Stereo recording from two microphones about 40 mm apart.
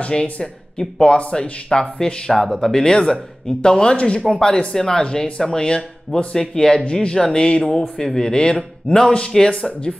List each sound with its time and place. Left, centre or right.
0.1 s speech: left
2.3 s speech: centre